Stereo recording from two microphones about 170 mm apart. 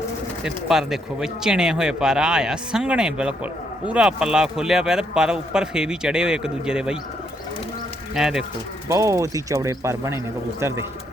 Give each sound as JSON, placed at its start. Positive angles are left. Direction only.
{"t": 0.4, "sound": "speech", "side_deg": 0}
{"t": 8.1, "sound": "speech", "side_deg": -5}
{"t": 8.9, "sound": "speech", "side_deg": -15}